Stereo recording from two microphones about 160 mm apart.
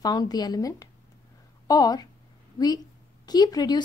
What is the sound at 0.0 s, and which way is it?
A woman's voice, 25° left (ahead or behind).